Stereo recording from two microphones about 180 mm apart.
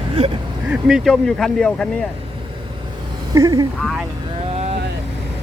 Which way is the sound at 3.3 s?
20° right (ahead or behind).